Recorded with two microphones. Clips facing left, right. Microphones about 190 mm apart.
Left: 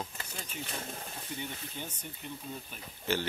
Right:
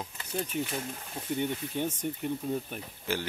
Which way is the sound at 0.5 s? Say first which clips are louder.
Right 9 dB; 55° right (ahead or behind).